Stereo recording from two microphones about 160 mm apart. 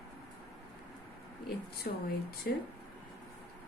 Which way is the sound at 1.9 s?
60° left (ahead or behind).